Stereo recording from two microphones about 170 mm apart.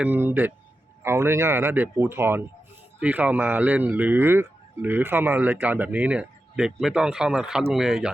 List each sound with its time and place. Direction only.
0.0 s speech: 10° right (ahead or behind)